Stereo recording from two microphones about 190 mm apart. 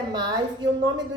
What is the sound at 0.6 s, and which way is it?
Speech, 20° right (ahead or behind).